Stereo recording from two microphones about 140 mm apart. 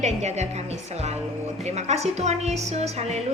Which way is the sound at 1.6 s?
50° right (ahead or behind).